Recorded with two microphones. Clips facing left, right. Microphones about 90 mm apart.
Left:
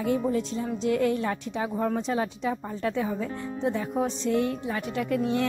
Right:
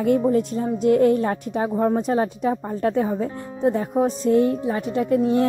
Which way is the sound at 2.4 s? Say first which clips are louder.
Right 7 dB; 40° right (ahead or behind).